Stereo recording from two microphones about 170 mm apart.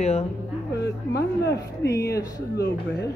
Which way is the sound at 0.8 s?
80° left.